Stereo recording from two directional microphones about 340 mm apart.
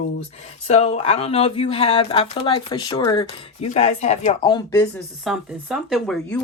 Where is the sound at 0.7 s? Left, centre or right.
Centre.